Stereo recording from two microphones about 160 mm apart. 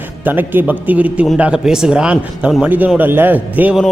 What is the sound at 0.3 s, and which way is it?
A man's voice, 10° right (ahead or behind).